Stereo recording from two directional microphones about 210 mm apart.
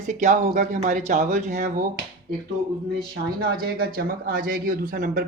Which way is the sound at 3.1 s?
45° right (ahead or behind).